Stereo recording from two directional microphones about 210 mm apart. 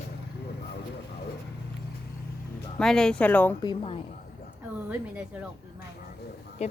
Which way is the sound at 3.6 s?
25° left (ahead or behind).